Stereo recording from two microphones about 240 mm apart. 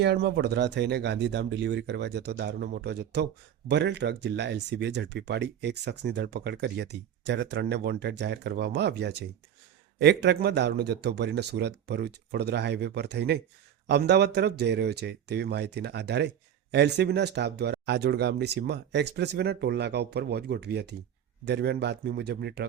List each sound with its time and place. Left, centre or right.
0.0 s speech: right